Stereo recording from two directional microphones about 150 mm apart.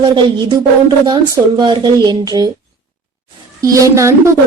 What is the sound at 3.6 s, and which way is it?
Speech, 20° right (ahead or behind).